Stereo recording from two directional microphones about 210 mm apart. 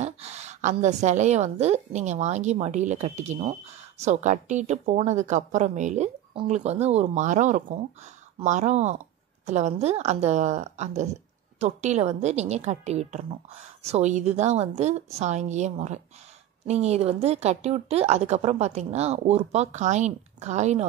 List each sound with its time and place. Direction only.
0.0 s a woman's voice: 30° right (ahead or behind)